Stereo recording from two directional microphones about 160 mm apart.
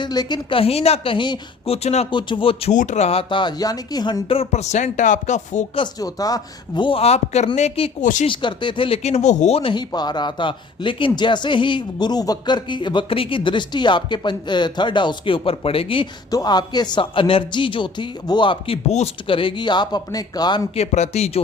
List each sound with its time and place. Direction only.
0.0 s speech: 25° left (ahead or behind)
2.7 s speech: 50° left (ahead or behind)
5.7 s speech: 25° left (ahead or behind); by 8.3 s 50° left (ahead or behind)
8.3 s speech: 30° left (ahead or behind)
20.7 s speech: 45° left (ahead or behind)